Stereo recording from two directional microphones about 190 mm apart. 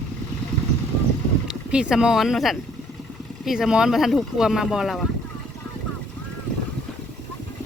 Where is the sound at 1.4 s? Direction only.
5° right (ahead or behind).